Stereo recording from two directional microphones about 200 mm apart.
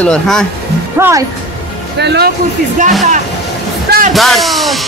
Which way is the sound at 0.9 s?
10° right (ahead or behind).